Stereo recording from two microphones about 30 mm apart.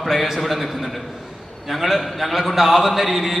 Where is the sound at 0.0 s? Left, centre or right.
Centre.